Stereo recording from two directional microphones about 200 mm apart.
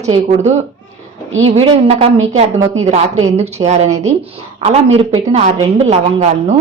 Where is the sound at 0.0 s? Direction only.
20° right (ahead or behind).